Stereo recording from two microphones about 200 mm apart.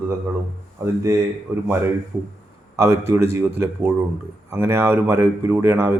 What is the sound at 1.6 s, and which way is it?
Speech, 10° right (ahead or behind).